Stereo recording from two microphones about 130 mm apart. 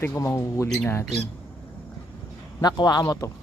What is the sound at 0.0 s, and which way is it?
Speech, 15° left (ahead or behind).